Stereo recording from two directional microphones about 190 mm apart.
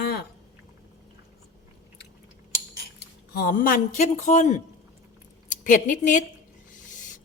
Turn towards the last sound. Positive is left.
turn(degrees=40)  # may be behind; listen again after turning